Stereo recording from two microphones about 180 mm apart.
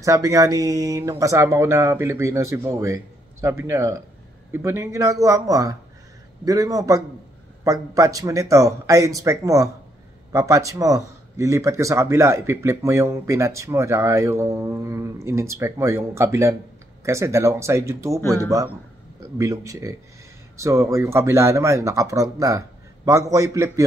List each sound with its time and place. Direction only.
0.0 s a man's voice: 20° right (ahead or behind)